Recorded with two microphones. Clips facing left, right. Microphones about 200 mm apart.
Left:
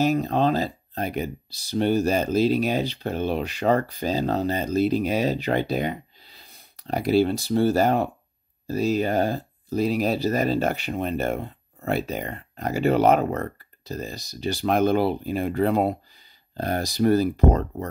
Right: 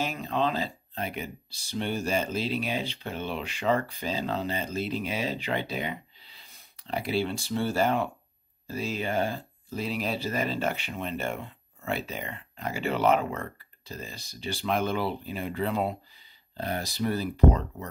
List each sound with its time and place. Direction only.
0.0 s speech: 40° left (ahead or behind)